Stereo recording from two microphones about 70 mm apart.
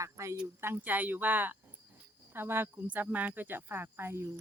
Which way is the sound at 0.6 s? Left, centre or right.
Right.